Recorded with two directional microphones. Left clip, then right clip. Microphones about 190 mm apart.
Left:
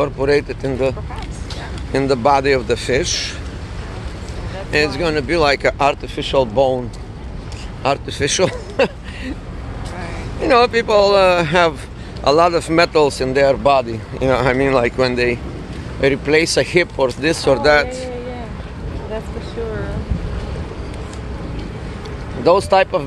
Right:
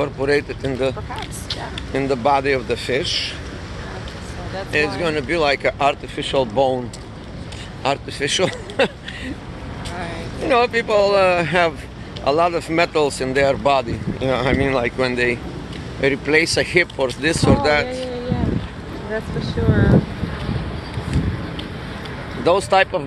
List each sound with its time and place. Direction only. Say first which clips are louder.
0.0 s speech: left 3 dB; 15° left (ahead or behind)
1.9 s speech: left 3 dB; 25° left (ahead or behind)
4.6 s speech: left 3 dB; 25° left (ahead or behind)
6.1 s speech: left 3 dB; 15° left (ahead or behind)
7.8 s speech: left 3 dB; 20° left (ahead or behind)
10.4 s speech: left 4 dB; 30° left (ahead or behind); by 13.8 s 15° left (ahead or behind)
14.2 s speech: left 4 dB; 30° left (ahead or behind)
22.4 s speech: left 3 dB; 20° left (ahead or behind)